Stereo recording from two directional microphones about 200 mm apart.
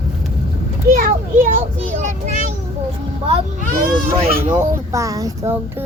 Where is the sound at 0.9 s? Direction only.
40° right (ahead or behind).